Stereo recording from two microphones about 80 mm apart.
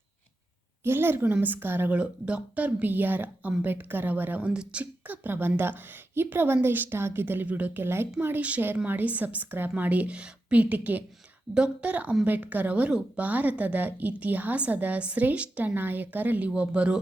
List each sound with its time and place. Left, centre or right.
0.9 s a woman's voice: right